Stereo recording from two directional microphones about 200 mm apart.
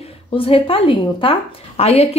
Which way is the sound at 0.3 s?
25° left (ahead or behind).